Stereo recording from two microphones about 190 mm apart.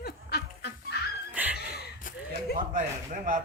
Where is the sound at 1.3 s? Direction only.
10° right (ahead or behind).